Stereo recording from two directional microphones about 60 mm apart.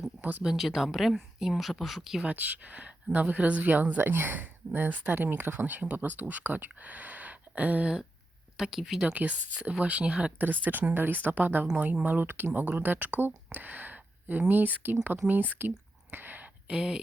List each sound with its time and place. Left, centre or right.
0.2 s speech: right
0.4 s a woman's voice: centre
2.2 s speech: right
8.5 s speech: centre
9.1 s speech: right
10.7 s speech: right
16.1 s a sound: right
16.7 s speech: centre